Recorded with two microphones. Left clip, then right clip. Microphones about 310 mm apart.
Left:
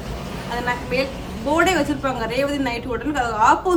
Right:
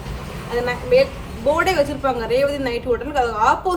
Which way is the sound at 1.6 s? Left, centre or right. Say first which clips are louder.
Left 3 dB; centre.